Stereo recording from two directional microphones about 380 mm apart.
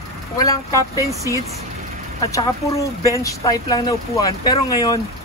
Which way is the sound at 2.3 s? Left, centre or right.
Centre.